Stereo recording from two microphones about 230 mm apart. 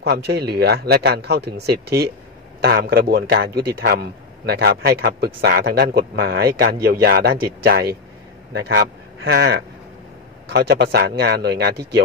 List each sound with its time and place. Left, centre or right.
0.0 s a man's voice: right